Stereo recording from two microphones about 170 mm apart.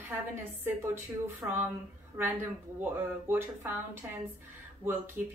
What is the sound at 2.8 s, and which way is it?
Speech, 15° right (ahead or behind).